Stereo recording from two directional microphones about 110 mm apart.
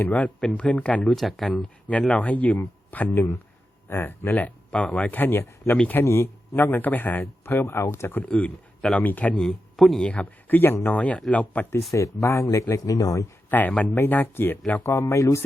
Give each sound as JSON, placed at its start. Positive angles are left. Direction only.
{"t": 0.0, "sound": "speech", "side_deg": 15}
{"t": 5.7, "sound": "speech", "side_deg": 10}
{"t": 6.0, "sound": "speech", "side_deg": 25}
{"t": 9.4, "sound": "speech", "side_deg": 0}
{"t": 10.1, "sound": "speech", "side_deg": 15}
{"t": 11.9, "sound": "speech", "side_deg": 30}
{"t": 13.5, "sound": "speech", "side_deg": 15}